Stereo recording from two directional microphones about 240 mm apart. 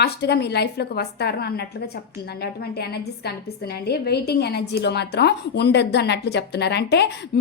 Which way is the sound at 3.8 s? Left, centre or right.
Left.